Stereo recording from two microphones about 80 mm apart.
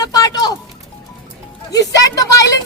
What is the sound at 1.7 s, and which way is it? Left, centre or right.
Speech, left.